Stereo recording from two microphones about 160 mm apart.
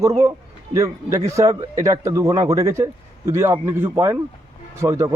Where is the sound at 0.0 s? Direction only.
20° right (ahead or behind).